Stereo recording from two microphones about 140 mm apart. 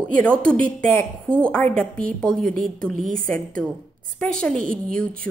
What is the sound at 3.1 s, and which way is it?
Speech, 75° right (ahead or behind).